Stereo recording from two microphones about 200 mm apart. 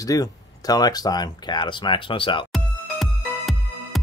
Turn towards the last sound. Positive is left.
turn(degrees=0)  # may be behind; listen again after turning